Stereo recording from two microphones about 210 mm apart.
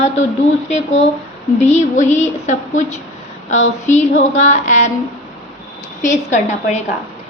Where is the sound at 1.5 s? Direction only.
35° left (ahead or behind).